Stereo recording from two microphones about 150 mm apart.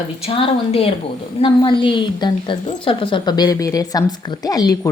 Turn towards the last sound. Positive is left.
turn(degrees=25)  # may be behind; listen again after turning